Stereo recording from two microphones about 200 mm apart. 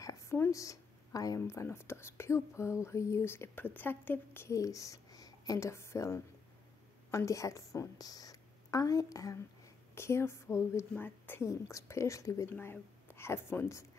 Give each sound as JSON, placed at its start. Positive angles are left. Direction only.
{"t": 0.0, "sound": "a woman's voice", "side_deg": 15}